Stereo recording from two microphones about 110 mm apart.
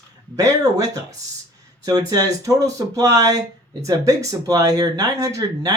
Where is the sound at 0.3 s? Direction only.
30° right (ahead or behind).